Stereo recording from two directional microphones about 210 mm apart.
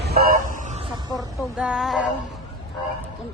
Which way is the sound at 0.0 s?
45° right (ahead or behind).